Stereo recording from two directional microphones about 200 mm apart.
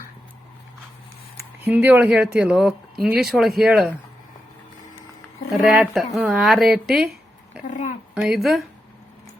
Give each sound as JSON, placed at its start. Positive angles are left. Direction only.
{"t": 1.6, "sound": "speech", "side_deg": -10}
{"t": 5.5, "sound": "a woman's voice", "side_deg": 0}
{"t": 7.6, "sound": "a sound", "side_deg": 40}
{"t": 8.1, "sound": "speech", "side_deg": 0}